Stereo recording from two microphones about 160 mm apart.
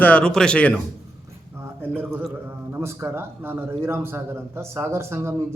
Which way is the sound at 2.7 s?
15° right (ahead or behind).